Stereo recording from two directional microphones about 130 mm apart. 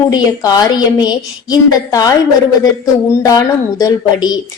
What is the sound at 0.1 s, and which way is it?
A woman's voice, 30° left (ahead or behind).